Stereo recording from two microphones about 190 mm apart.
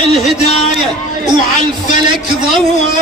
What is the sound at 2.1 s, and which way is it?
Speech, 25° right (ahead or behind).